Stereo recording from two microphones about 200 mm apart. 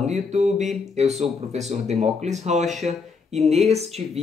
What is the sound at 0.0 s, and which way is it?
Speech, 35° right (ahead or behind).